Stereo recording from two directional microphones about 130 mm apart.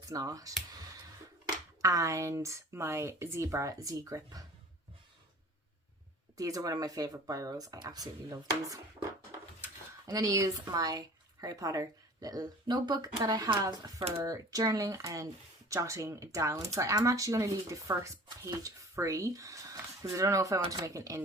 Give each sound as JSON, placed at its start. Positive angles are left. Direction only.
{"t": 0.0, "sound": "speech", "side_deg": -25}
{"t": 1.8, "sound": "speech", "side_deg": -25}
{"t": 6.3, "sound": "speech", "side_deg": -25}
{"t": 10.1, "sound": "speech", "side_deg": -25}